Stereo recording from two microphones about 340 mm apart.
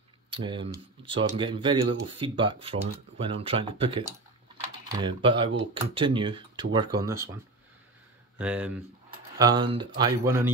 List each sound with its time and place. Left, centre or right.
0.3 s speech: centre
8.4 s speech: centre